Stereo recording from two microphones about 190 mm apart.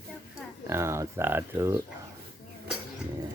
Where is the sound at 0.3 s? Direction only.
15° right (ahead or behind).